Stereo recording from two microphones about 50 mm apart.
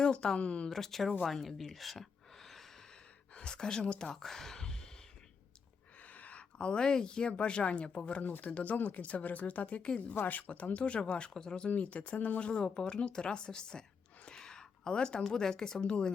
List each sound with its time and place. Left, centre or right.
0.0 s speech: centre
0.7 s speech: centre
3.3 s speech: centre
6.0 s speech: left
11.7 s speech: left
12.5 s speech: centre
14.3 s a sound: centre
15.2 s speech: centre